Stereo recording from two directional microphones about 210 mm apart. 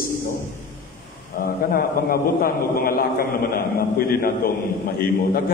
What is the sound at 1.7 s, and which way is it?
A man's voice, 40° left (ahead or behind).